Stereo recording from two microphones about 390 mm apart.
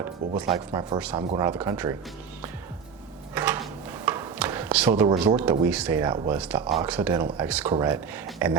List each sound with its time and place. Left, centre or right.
0.0 s speech: centre
3.3 s a sound: centre
5.1 s speech: centre
5.5 s speech: centre